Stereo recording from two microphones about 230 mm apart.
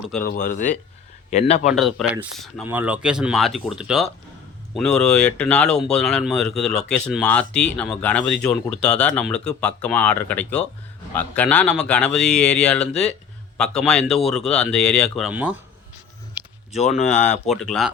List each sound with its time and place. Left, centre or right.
0.2 s a man's voice: left
1.6 s speech: centre
17.0 s speech: left
17.5 s speech: centre